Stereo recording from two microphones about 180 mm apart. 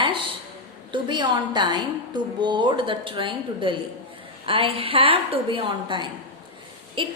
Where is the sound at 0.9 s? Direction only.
25° right (ahead or behind).